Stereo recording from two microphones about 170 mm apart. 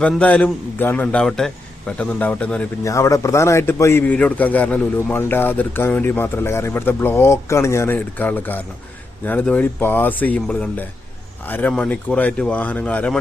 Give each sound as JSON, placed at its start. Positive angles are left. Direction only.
{"t": 0.0, "sound": "a man's voice", "side_deg": 10}
{"t": 2.8, "sound": "a man's voice", "side_deg": 20}